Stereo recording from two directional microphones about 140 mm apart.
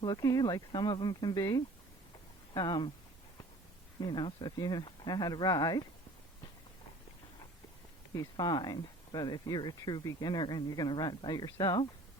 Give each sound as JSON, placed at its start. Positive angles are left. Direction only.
{"t": 0.0, "sound": "speech", "side_deg": 30}
{"t": 4.0, "sound": "speech", "side_deg": 30}
{"t": 8.1, "sound": "speech", "side_deg": 25}